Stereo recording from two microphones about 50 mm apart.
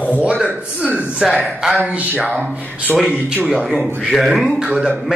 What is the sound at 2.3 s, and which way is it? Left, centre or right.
Speech, right.